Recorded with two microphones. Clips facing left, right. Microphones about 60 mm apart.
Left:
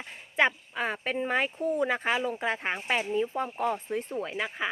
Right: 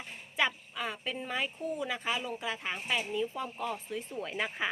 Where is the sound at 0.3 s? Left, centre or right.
Left.